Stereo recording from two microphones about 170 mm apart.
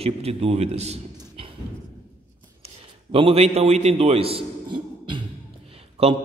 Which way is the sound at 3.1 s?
35° right (ahead or behind).